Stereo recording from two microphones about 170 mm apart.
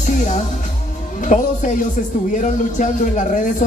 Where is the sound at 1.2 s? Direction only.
50° left (ahead or behind).